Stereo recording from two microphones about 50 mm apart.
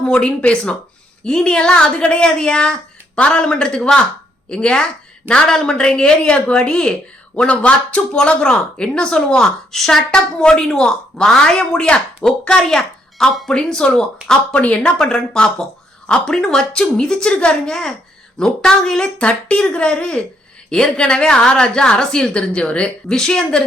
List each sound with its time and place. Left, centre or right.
0.0 s speech: left
7.3 s speech: left
14.9 s speech: centre
17.7 s speech: centre
19.2 s speech: left